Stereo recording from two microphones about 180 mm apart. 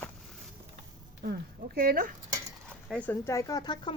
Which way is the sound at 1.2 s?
55° right (ahead or behind).